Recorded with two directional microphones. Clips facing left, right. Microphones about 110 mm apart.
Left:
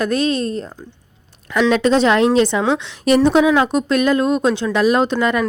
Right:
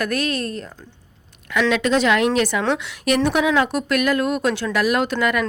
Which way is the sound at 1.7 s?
35° left (ahead or behind).